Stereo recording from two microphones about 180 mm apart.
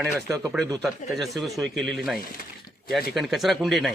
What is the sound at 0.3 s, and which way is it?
Speech, 15° right (ahead or behind).